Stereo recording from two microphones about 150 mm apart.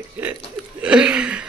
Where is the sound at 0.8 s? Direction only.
5° right (ahead or behind).